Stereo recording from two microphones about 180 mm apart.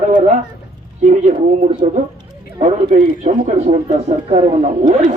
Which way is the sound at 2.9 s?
40° right (ahead or behind).